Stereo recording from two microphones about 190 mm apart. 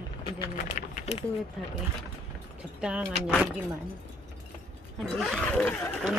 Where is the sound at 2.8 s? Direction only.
5° right (ahead or behind).